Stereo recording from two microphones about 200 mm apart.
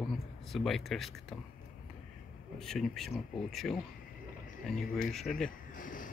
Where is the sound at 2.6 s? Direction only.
Centre (ahead or behind).